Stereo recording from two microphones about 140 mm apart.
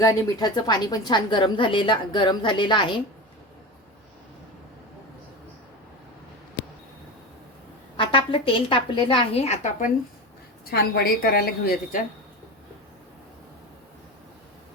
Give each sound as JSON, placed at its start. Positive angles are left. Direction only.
{"t": 0.0, "sound": "a woman's voice", "side_deg": 25}
{"t": 7.9, "sound": "a woman's voice", "side_deg": 40}
{"t": 10.7, "sound": "a woman's voice", "side_deg": 90}